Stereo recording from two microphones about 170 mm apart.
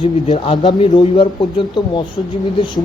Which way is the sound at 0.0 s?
35° left (ahead or behind).